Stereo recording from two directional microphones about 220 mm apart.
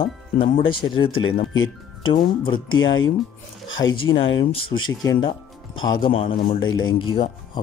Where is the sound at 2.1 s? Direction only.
25° left (ahead or behind).